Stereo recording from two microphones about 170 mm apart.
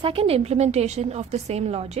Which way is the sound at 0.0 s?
35° right (ahead or behind).